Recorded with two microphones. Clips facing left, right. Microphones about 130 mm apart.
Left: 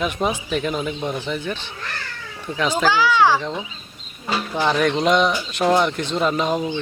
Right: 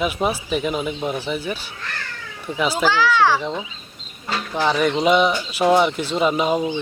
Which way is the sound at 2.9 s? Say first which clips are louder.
Left 1 dB; 15° left (ahead or behind).